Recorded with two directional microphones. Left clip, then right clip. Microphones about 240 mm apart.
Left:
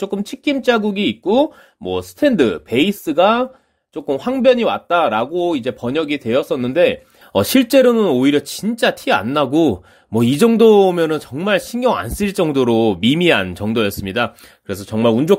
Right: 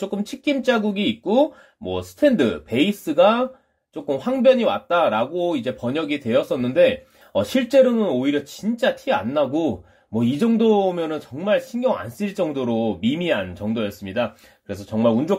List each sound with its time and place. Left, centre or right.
0.0 s speech: left